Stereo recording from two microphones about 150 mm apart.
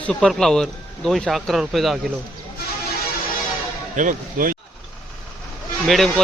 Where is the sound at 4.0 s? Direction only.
65° right (ahead or behind).